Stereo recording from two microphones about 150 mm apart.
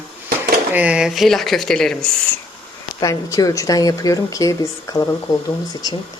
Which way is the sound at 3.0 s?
25° left (ahead or behind).